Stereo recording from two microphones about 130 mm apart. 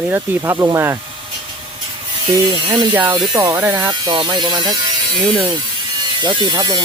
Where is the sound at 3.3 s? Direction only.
25° right (ahead or behind).